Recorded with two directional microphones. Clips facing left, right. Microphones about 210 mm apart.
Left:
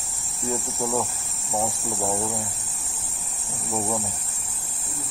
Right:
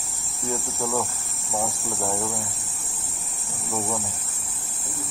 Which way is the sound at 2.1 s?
Centre (ahead or behind).